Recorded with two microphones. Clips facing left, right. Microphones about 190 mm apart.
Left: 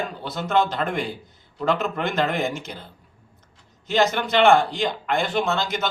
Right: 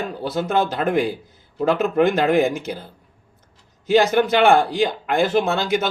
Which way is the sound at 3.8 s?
10° right (ahead or behind).